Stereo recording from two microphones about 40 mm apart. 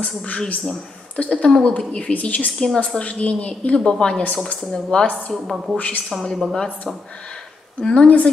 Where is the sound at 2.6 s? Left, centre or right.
Centre.